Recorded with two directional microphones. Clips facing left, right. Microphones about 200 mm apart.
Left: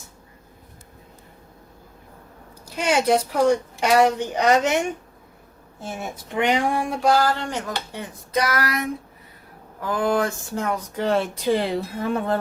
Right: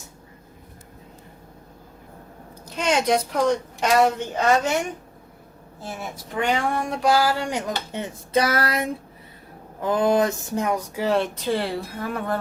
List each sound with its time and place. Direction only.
2.6 s a woman's voice: 10° left (ahead or behind)
6.3 s speech: 15° left (ahead or behind); by 8.0 s 15° right (ahead or behind)
8.3 s speech: 30° right (ahead or behind)
11.0 s speech: centre (ahead or behind)
11.4 s a woman's voice: 15° left (ahead or behind)